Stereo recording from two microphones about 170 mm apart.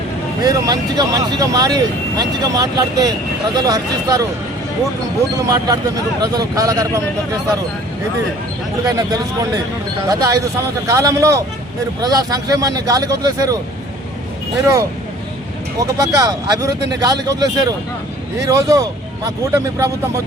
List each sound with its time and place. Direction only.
0.4 s speech: 20° right (ahead or behind)
5.5 s speech: 25° right (ahead or behind)
8.9 s speech: 20° right (ahead or behind)
14.6 s speech: 20° right (ahead or behind)